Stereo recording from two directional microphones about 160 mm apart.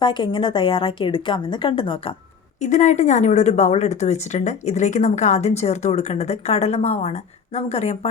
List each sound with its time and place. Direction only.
0.0 s a woman's voice: 30° left (ahead or behind)
2.6 s a woman's voice: 50° left (ahead or behind)